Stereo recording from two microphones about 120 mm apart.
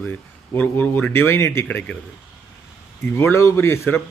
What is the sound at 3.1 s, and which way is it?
Speech, 20° left (ahead or behind).